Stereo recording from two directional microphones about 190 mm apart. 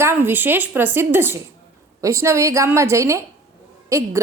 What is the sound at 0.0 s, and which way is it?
A woman's voice, 10° right (ahead or behind).